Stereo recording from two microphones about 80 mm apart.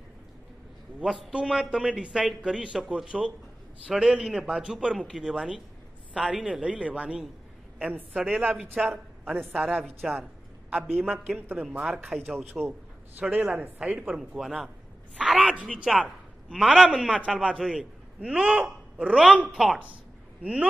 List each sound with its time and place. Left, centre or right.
1.0 s a man's voice: centre
9.2 s a woman's voice: right
9.8 s a man's voice: centre
12.1 s a man's voice: centre
13.2 s a man's voice: centre
14.4 s a man's voice: centre
15.9 s a man's voice: centre
19.5 s a man's voice: centre